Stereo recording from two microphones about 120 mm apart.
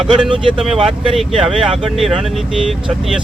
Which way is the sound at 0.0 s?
5° right (ahead or behind).